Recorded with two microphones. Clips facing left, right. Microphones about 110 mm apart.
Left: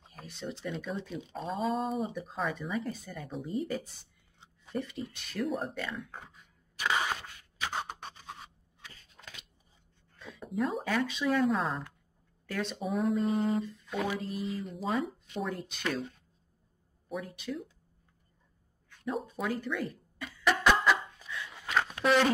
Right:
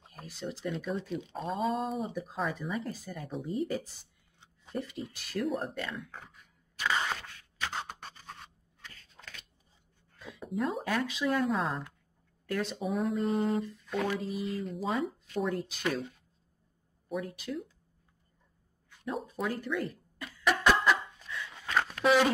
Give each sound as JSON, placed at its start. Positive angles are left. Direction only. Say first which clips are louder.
{"t": 0.0, "sound": "speech", "louder": "right 1 dB", "side_deg": 0}
{"t": 6.8, "sound": "a sound", "louder": "left 1 dB", "side_deg": 15}
{"t": 9.2, "sound": "scissors", "louder": "even", "side_deg": -5}
{"t": 10.1, "sound": "speech", "louder": "left 1 dB", "side_deg": 0}
{"t": 19.0, "sound": "speech", "louder": "left 1 dB", "side_deg": 0}
{"t": 20.3, "sound": "a sound", "louder": "even", "side_deg": 0}